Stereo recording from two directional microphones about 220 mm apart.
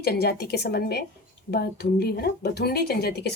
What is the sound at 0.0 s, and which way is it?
Speech, 45° left (ahead or behind).